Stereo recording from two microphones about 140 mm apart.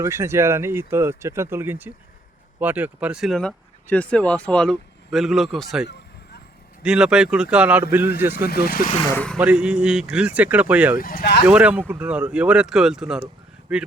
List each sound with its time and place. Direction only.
0.0 s speech: 20° right (ahead or behind)
8.4 s speech: 90° left
9.1 s speech: 5° left (ahead or behind)
9.4 s speech: 10° right (ahead or behind)
10.9 s speech: 90° left
11.4 s speech: 10° right (ahead or behind)